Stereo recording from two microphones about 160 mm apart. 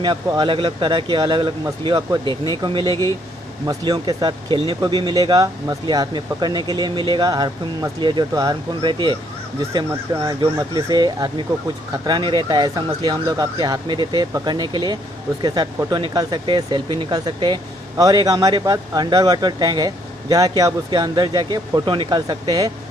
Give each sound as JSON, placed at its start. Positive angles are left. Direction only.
{"t": 0.0, "sound": "speech", "side_deg": -30}